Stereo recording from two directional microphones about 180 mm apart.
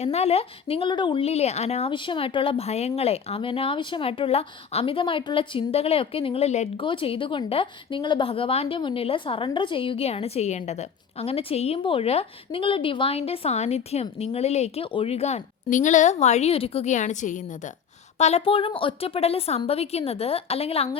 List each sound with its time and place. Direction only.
0.0 s a woman's voice: 35° left (ahead or behind)